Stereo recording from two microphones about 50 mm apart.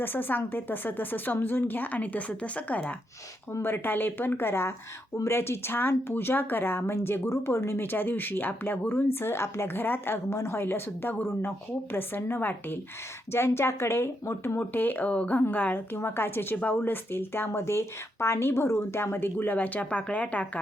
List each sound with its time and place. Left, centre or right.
0.0 s speech: left
3.6 s a woman's voice: left
7.8 s speech: left
9.1 s speech: left
10.2 s speech: left
13.3 s a woman's voice: left
14.6 s speech: left
15.0 s speech: left
16.6 s speech: left
19.5 s speech: left